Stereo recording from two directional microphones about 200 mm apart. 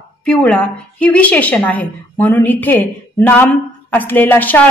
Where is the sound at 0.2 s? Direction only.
5° left (ahead or behind).